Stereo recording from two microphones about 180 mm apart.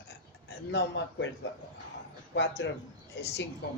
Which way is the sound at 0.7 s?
75° left (ahead or behind).